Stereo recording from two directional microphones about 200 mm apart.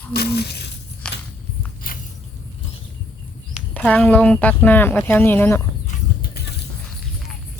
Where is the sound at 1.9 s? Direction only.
45° left (ahead or behind).